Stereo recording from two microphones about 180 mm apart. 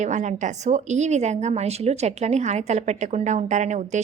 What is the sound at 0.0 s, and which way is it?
A woman's voice, 40° right (ahead or behind).